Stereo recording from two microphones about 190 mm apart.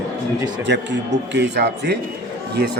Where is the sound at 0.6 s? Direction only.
65° right (ahead or behind).